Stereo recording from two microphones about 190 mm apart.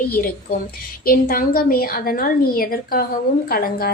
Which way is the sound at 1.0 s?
50° left (ahead or behind).